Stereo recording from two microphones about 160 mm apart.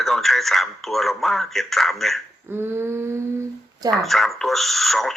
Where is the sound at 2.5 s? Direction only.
15° right (ahead or behind).